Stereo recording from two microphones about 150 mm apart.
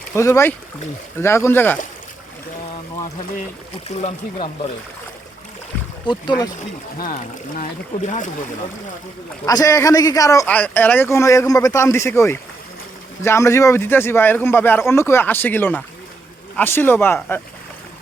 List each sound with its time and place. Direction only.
0.2 s a man's voice: 20° left (ahead or behind)
4.0 s speech: 45° left (ahead or behind)
6.1 s a man's voice: 30° left (ahead or behind)
7.6 s speech: 55° left (ahead or behind)
9.5 s a man's voice: 25° left (ahead or behind)